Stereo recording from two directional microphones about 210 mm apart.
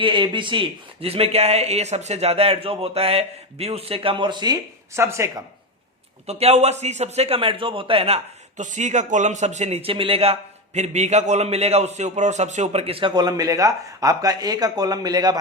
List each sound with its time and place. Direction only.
0.0 s a man's voice: 25° right (ahead or behind)
6.2 s a man's voice: 30° right (ahead or behind)